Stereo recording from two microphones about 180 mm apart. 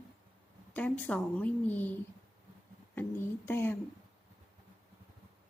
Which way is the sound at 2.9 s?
10° left (ahead or behind).